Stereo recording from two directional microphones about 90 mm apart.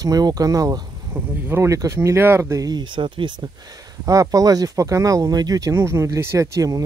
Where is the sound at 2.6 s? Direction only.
55° right (ahead or behind).